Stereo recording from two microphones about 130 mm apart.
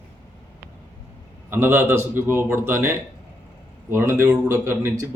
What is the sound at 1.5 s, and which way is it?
A man's voice, 15° right (ahead or behind).